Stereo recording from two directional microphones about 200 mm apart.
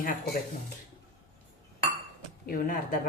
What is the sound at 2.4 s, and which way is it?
Speech, 45° left (ahead or behind).